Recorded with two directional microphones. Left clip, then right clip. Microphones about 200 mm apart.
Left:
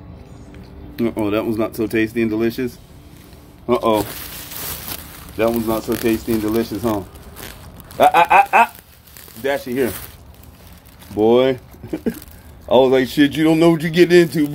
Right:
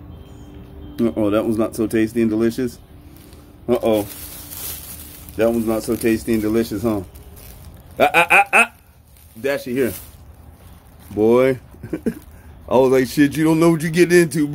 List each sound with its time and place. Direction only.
0.9 s a man's voice: 20° right (ahead or behind)
5.4 s a man's voice: 25° right (ahead or behind)
8.0 s a sound: 35° right (ahead or behind)
11.1 s a man's voice: 30° right (ahead or behind)